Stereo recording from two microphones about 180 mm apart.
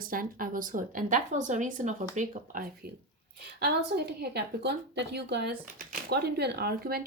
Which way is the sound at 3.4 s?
65° right (ahead or behind).